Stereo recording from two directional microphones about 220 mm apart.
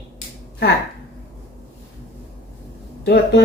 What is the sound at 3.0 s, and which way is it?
Speech, 50° left (ahead or behind).